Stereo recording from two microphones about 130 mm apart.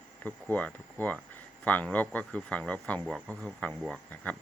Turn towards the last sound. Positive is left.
turn(degrees=5)  # may be behind; listen again after turning